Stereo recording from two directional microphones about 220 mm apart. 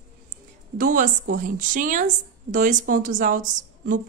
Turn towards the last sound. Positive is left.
turn(degrees=-35)  # may be behind; listen again after turning